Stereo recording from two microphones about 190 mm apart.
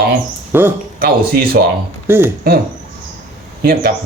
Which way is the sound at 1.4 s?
50° right (ahead or behind).